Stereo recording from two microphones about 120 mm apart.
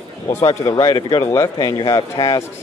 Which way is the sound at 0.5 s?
35° left (ahead or behind).